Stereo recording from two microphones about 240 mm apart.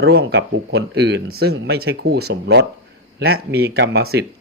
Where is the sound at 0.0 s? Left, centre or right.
Right.